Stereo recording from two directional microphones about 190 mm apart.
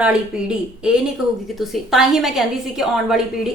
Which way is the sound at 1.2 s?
5° right (ahead or behind).